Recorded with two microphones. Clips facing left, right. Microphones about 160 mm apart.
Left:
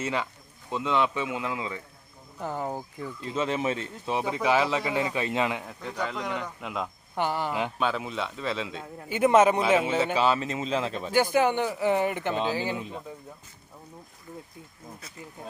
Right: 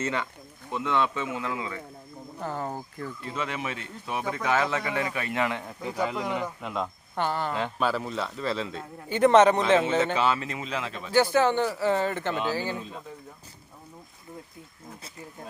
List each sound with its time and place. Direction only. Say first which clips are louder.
0.0 s speech: even; 15° left (ahead or behind)
3.3 s a man's voice: left 6 dB; 30° left (ahead or behind)
5.8 s speech: right 4 dB; 10° right (ahead or behind)
7.2 s speech: even; 15° left (ahead or behind)
7.8 s a man's voice: right 1 dB; centre (ahead or behind); by 11.1 s 35° left (ahead or behind)
11.1 s speech: right 1 dB; 15° left (ahead or behind)